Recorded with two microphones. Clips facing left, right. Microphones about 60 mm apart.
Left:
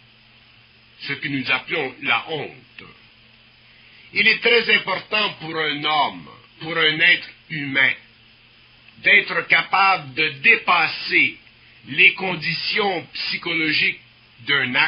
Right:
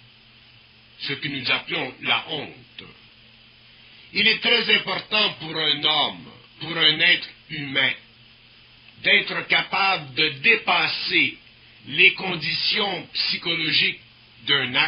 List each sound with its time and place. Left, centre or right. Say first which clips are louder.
0.9 s a man's voice: left 4 dB; left
4.1 s a man's voice: left 4 dB; left
10.1 s a sound: left 3 dB; left
10.6 s a man's voice: left 4 dB; left